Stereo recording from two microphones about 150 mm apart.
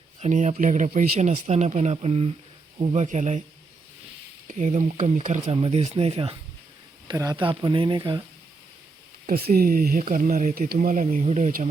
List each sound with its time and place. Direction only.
0.2 s speech: 50° right (ahead or behind)
4.4 s speech: 55° right (ahead or behind)
7.1 s speech: 30° right (ahead or behind)
9.2 s speech: 85° right; by 11.3 s 60° right (ahead or behind)
11.3 s speech: 50° right (ahead or behind)